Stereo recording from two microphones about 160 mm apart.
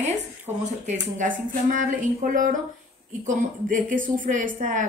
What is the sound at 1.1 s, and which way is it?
A woman's voice, 55° right (ahead or behind).